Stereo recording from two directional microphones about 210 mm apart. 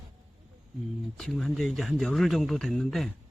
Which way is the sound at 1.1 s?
Centre (ahead or behind).